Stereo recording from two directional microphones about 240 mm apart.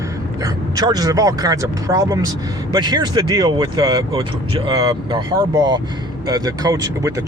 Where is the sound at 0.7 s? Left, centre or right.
Centre.